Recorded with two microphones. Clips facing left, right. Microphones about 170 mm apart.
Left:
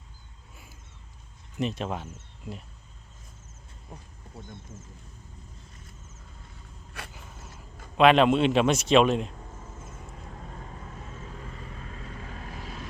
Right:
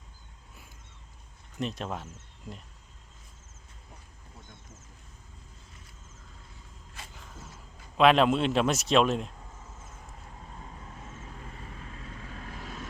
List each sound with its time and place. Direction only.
1.5 s speech: centre (ahead or behind)
7.0 s a sound: 65° left (ahead or behind)
7.9 s a man's voice: centre (ahead or behind)